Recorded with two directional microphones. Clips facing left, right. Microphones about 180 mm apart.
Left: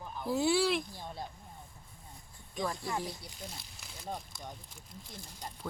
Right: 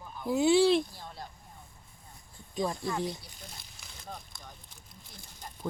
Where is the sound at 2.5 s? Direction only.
25° right (ahead or behind).